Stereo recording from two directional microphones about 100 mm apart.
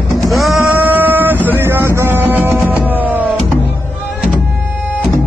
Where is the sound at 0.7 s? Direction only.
15° right (ahead or behind).